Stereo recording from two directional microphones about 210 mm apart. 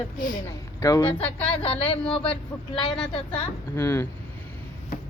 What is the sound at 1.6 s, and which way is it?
A woman's voice, 25° left (ahead or behind).